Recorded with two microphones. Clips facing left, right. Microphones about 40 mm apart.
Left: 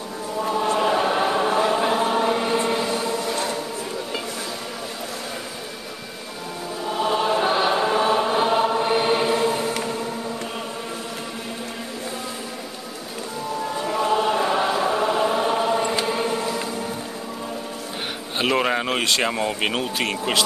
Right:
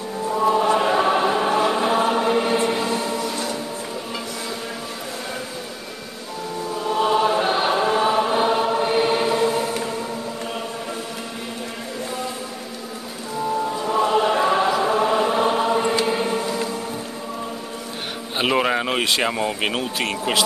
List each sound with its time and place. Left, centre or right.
0.8 s chant: centre
2.1 s choir: centre
2.7 s music: centre
6.9 s choir: centre
13.9 s chant: centre
16.1 s choir: centre
18.4 s speech: centre